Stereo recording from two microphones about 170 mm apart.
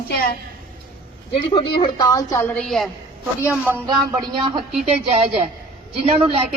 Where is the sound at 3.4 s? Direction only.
10° right (ahead or behind).